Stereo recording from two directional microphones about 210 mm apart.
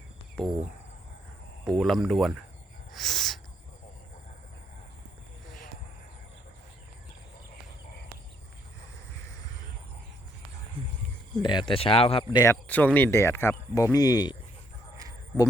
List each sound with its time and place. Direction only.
0.4 s speech: 5° left (ahead or behind)
1.8 s speech: centre (ahead or behind)
2.9 s a sound: centre (ahead or behind)
11.4 s speech: 25° left (ahead or behind)
12.6 s speech: 5° left (ahead or behind)